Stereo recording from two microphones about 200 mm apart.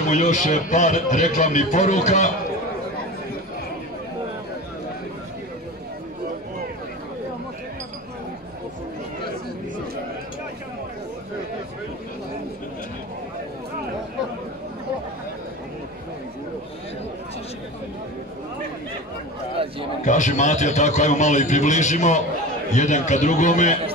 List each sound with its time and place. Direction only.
0.1 s a man's voice: 40° left (ahead or behind)
20.1 s a sound: 35° left (ahead or behind)
22.7 s a man's voice: 35° left (ahead or behind)